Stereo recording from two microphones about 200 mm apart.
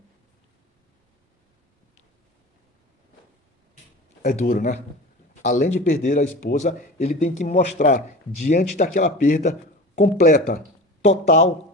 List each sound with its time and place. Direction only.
4.2 s a man's voice: 40° left (ahead or behind)
11.0 s a man's voice: 35° left (ahead or behind)